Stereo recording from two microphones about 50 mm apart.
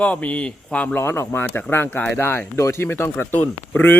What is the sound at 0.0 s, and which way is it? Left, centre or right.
Speech, left.